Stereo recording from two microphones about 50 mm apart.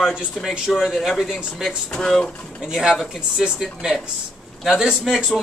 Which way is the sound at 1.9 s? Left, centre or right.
Centre.